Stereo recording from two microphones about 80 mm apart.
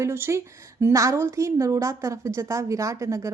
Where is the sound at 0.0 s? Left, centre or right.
Right.